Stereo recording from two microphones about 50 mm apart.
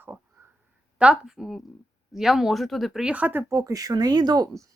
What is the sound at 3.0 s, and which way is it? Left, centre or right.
Speech, right.